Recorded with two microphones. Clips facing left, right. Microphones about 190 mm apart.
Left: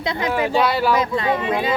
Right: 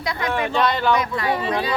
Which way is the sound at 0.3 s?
5° left (ahead or behind).